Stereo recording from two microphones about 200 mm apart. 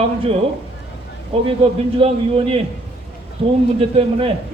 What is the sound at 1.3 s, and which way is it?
Speech, 30° right (ahead or behind).